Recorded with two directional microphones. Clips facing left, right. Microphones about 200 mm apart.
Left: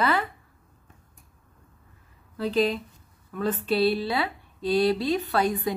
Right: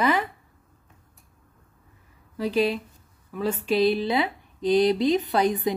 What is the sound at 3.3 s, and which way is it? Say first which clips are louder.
Speech: right 1 dB; 10° right (ahead or behind).